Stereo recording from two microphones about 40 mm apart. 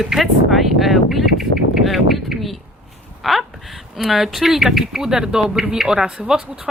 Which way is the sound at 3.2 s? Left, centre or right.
Centre.